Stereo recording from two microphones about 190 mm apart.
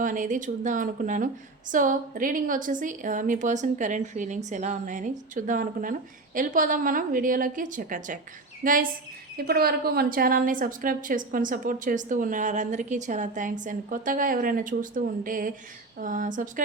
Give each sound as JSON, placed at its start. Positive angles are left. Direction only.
{"t": 0.0, "sound": "a woman's voice", "side_deg": -45}